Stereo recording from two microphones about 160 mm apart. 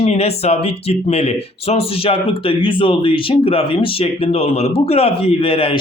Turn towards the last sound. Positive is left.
turn(degrees=35)  # may be behind; listen again after turning